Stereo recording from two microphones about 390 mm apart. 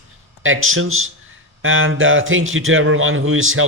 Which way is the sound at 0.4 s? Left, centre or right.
Right.